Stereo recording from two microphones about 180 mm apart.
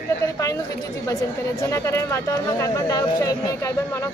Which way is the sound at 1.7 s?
15° left (ahead or behind).